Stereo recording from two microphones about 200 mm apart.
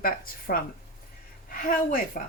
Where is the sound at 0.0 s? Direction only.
45° left (ahead or behind).